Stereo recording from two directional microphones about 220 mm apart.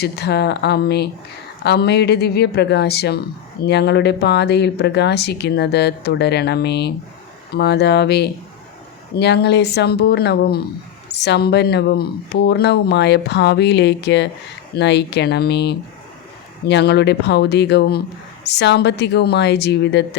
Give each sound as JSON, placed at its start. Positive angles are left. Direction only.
{"t": 0.0, "sound": "a woman's voice", "side_deg": 50}